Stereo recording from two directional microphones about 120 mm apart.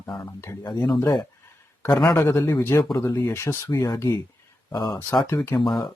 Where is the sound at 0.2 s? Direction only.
25° left (ahead or behind).